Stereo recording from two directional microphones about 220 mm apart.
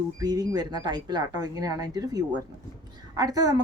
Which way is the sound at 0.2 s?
15° right (ahead or behind).